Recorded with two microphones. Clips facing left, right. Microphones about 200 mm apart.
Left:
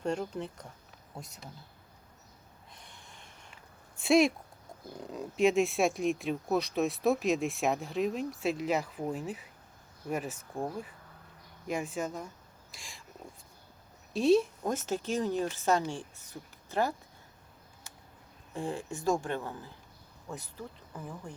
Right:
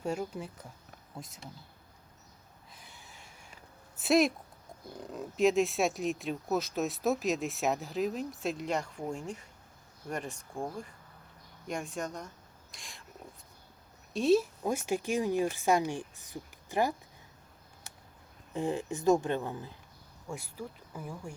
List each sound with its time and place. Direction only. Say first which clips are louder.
0.0 s a woman's voice: left 2 dB; 5° right (ahead or behind)
2.7 s a sound: even; 5° right (ahead or behind)
3.9 s speech: left 2 dB; centre (ahead or behind)
14.1 s a woman's voice: left 1 dB; centre (ahead or behind)
18.5 s speech: right 3 dB; 15° right (ahead or behind)